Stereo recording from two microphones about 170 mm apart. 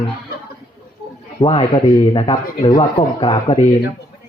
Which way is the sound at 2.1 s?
30° left (ahead or behind).